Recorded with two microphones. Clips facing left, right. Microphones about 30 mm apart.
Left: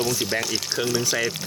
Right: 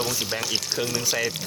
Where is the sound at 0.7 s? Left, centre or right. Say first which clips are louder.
Left 2 dB; centre.